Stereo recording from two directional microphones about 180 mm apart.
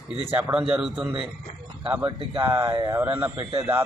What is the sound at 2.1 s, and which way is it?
Speech, 30° right (ahead or behind).